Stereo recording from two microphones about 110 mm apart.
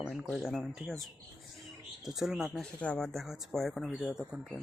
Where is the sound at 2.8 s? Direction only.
10° left (ahead or behind).